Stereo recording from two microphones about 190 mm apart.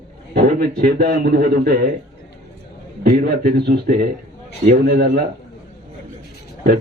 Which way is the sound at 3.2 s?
55° right (ahead or behind).